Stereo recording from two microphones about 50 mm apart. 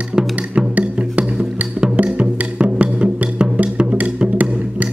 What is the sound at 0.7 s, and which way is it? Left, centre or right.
Music, right.